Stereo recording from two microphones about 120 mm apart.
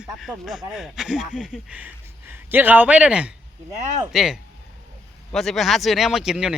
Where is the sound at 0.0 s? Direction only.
5° right (ahead or behind).